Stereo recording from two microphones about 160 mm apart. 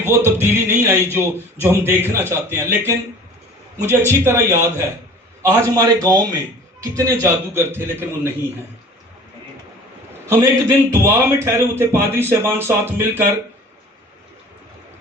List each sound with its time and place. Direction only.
0.0 s a man's voice: 15° right (ahead or behind)
10.7 s speech: 15° right (ahead or behind)